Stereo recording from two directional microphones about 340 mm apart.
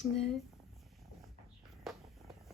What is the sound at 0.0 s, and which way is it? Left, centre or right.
Speech, centre.